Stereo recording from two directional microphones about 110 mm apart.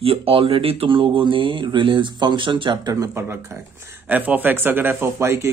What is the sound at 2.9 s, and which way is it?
Speech, 25° right (ahead or behind).